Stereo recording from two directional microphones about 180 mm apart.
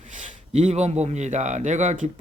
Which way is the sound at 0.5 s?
40° right (ahead or behind).